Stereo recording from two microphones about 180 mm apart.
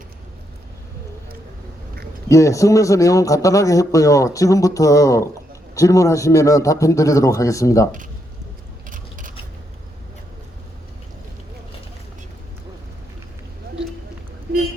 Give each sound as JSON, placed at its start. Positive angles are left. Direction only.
{"t": 2.3, "sound": "a man's voice", "side_deg": 15}
{"t": 8.9, "sound": "mechanisms", "side_deg": -45}